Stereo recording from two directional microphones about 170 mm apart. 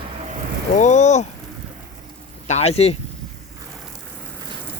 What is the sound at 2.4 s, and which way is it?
Speech, 40° left (ahead or behind).